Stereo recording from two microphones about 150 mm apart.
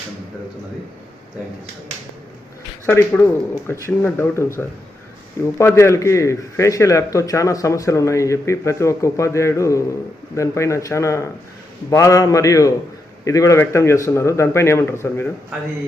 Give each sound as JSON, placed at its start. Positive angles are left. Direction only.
{"t": 2.8, "sound": "a man's voice", "side_deg": 15}